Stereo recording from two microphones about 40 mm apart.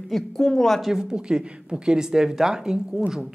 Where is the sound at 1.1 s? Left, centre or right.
Right.